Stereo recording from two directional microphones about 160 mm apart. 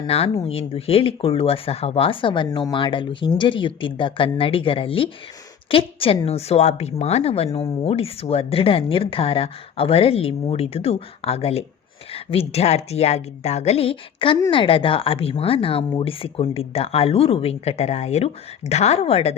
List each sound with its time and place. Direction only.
0.1 s speech: 40° left (ahead or behind)